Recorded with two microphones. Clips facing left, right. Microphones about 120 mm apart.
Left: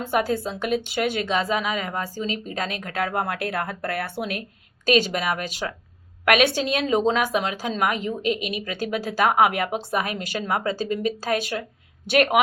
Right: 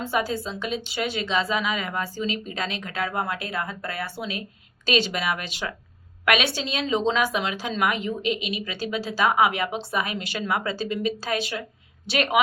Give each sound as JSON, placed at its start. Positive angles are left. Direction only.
{"t": 0.0, "sound": "a woman's voice", "side_deg": 50}
{"t": 4.9, "sound": "speech", "side_deg": 45}